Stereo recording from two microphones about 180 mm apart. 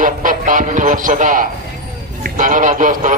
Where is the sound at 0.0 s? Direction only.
50° right (ahead or behind).